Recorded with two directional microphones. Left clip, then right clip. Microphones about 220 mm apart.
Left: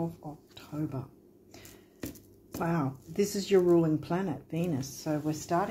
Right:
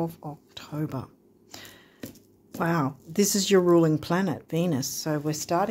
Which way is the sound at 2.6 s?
45° right (ahead or behind).